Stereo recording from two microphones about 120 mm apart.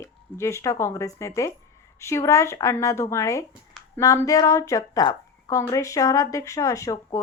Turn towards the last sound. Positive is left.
turn(degrees=30)  # may be behind; listen again after turning